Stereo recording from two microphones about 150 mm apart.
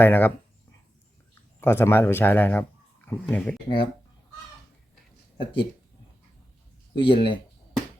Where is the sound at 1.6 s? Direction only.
15° left (ahead or behind).